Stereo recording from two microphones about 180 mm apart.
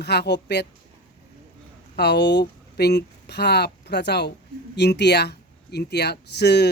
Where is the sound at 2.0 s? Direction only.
65° left (ahead or behind).